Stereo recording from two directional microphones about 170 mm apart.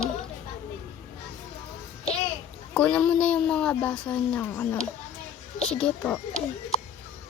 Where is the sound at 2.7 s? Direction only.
5° left (ahead or behind).